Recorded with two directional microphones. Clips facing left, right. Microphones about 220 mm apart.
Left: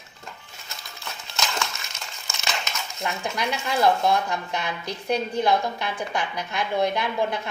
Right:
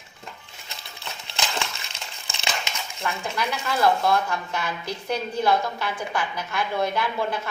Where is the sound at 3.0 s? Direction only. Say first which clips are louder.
Even; 15° left (ahead or behind).